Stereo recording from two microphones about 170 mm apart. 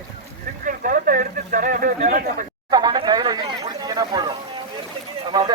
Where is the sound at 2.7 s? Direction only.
25° right (ahead or behind).